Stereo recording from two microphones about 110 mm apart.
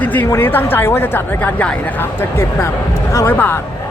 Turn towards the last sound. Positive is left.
turn(degrees=20)  # may be behind; listen again after turning